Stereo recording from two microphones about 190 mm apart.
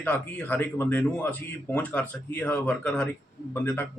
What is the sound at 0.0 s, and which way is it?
Speech, 5° left (ahead or behind).